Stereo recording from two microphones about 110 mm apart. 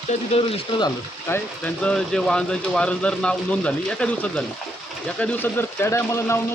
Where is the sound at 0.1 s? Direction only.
65° left (ahead or behind).